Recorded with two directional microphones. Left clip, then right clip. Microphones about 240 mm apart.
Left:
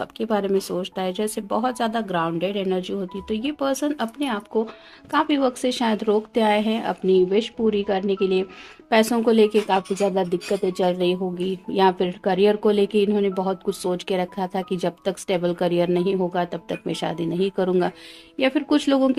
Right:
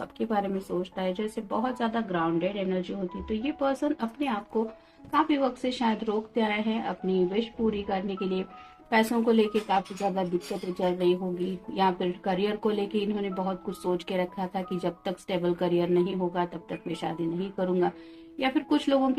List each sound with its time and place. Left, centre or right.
0.0 s speech: left